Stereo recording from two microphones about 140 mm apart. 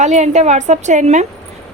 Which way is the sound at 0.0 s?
55° right (ahead or behind).